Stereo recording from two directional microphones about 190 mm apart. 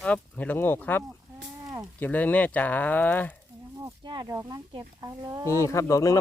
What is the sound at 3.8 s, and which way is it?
Speech, 25° right (ahead or behind).